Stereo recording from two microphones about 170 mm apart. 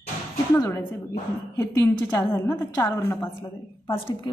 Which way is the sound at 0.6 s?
15° left (ahead or behind).